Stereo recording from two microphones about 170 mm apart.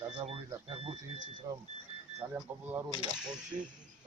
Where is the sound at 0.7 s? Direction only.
35° right (ahead or behind).